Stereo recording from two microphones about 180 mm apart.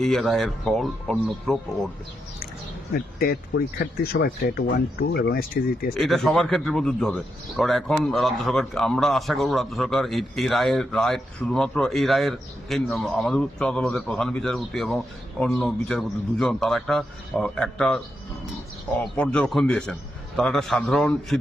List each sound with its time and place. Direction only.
0.0 s a man's voice: centre (ahead or behind)
3.2 s speech: 55° left (ahead or behind)
5.9 s a man's voice: centre (ahead or behind)
19.0 s a man's voice: 5° left (ahead or behind)